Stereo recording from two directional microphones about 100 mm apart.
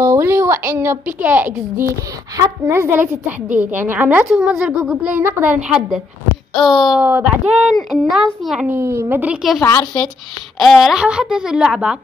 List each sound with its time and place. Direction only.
0.0 s a woman's voice: 25° right (ahead or behind); by 7.0 s centre (ahead or behind)
7.0 s a woman's voice: 15° right (ahead or behind)
7.7 s speech: centre (ahead or behind)
8.6 s a child's voice: 25° right (ahead or behind)
9.4 s speech: 5° right (ahead or behind)
10.6 s a woman's voice: centre (ahead or behind)